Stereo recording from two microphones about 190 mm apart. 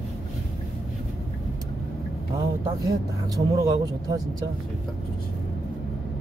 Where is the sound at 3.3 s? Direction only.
20° right (ahead or behind).